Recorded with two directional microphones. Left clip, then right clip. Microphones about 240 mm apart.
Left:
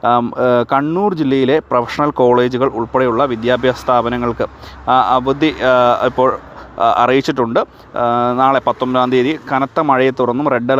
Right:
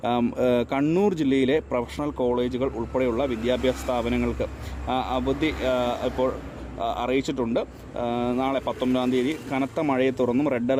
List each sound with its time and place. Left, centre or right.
0.0 s speech: centre